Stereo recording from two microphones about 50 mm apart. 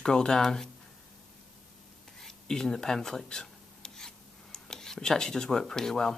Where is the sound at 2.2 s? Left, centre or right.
Centre.